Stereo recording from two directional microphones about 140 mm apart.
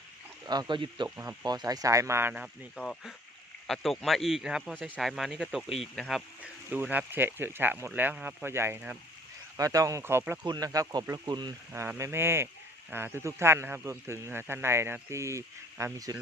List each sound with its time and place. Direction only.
0.4 s speech: 30° right (ahead or behind)
1.1 s speech: 20° right (ahead or behind)
1.5 s speech: 30° right (ahead or behind)
2.7 s speech: 5° left (ahead or behind)
6.7 s speech: 10° right (ahead or behind)
10.4 s speech: 25° right (ahead or behind)
11.7 s speech: 15° right (ahead or behind)